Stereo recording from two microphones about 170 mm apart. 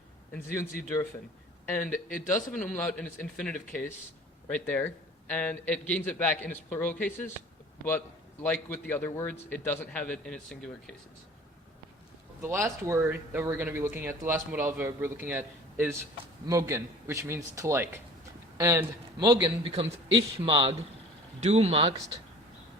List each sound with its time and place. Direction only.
0.3 s a man's voice: 15° left (ahead or behind)
1.9 s a man's voice: 55° left (ahead or behind)
2.3 s a man's voice: 5° left (ahead or behind)
8.4 s a man's voice: 10° left (ahead or behind)
12.4 s a man's voice: 15° right (ahead or behind); by 21.9 s 35° right (ahead or behind)